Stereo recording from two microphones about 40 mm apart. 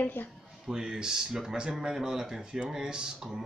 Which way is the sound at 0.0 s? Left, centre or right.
Left.